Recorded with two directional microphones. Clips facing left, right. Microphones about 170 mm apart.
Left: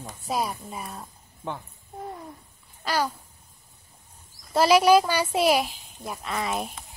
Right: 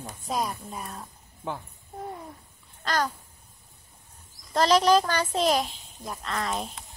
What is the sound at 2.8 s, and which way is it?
Babbling, 10° left (ahead or behind).